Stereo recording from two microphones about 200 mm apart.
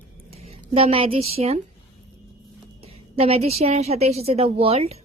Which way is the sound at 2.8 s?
30° right (ahead or behind).